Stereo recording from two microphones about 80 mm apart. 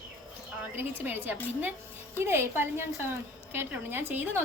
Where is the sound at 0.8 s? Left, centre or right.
Right.